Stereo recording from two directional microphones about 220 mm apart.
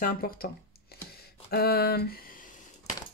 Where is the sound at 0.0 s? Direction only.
40° left (ahead or behind).